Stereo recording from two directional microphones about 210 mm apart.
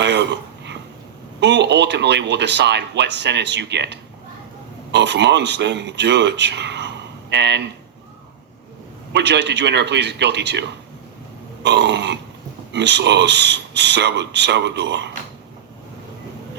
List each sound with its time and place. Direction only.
0.0 s a sound: 55° right (ahead or behind)
1.4 s a man's voice: 55° right (ahead or behind)
9.1 s speech: 55° right (ahead or behind)